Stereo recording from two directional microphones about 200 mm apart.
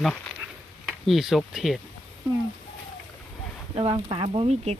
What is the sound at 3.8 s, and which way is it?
Speech, 25° right (ahead or behind).